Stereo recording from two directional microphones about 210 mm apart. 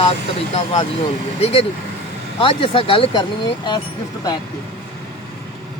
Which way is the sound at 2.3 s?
25° left (ahead or behind).